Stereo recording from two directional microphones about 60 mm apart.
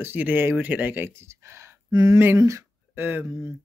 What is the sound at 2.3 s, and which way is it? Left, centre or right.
Speech, right.